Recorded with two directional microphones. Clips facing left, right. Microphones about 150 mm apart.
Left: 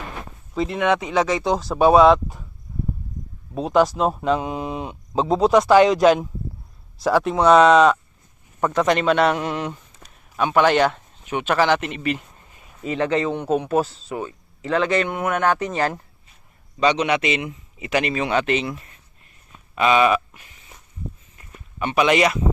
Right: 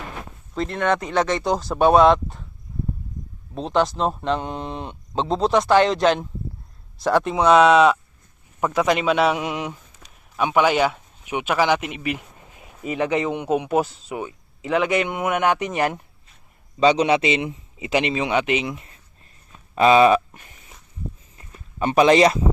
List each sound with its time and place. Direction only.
0.5 s speech: 5° left (ahead or behind)
3.5 s speech: 5° left (ahead or behind); by 16.0 s 15° right (ahead or behind)
16.8 s a man's voice: 30° right (ahead or behind)
19.7 s speech: 35° right (ahead or behind)
21.8 s speech: 35° right (ahead or behind)